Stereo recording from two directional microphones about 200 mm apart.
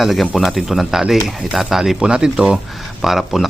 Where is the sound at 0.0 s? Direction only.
Centre (ahead or behind).